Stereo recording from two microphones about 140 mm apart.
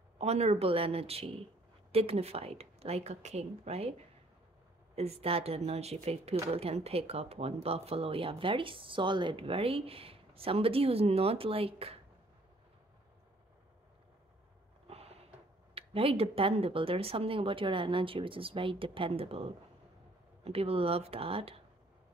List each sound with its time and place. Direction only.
0.2 s speech: 50° right (ahead or behind)
4.9 s speech: 45° right (ahead or behind)
14.9 s a sound: 45° right (ahead or behind)
15.7 s speech: 40° right (ahead or behind)